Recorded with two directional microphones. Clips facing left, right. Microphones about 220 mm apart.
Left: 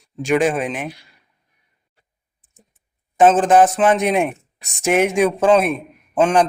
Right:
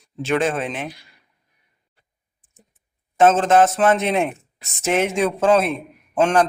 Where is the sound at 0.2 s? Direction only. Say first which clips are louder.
Left 3 dB; 15° left (ahead or behind).